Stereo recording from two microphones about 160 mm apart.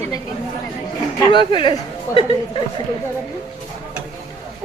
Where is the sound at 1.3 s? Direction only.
30° left (ahead or behind).